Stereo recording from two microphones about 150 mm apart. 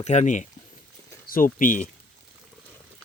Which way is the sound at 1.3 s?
65° left (ahead or behind).